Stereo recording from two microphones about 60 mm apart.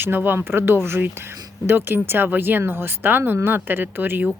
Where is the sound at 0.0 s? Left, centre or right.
Right.